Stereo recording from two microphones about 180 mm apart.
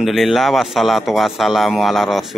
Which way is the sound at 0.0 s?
Centre (ahead or behind).